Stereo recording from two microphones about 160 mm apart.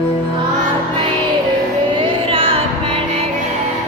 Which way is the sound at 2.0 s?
35° right (ahead or behind).